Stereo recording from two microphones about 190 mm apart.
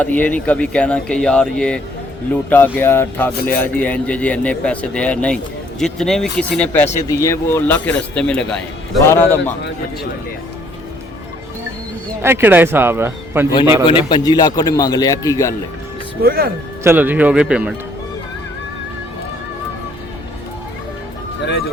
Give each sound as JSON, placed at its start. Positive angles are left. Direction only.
{"t": 0.0, "sound": "speech", "side_deg": 10}
{"t": 12.2, "sound": "speech", "side_deg": -10}
{"t": 13.8, "sound": "a man's voice", "side_deg": 25}
{"t": 16.2, "sound": "speech", "side_deg": -50}
{"t": 16.8, "sound": "speech", "side_deg": -10}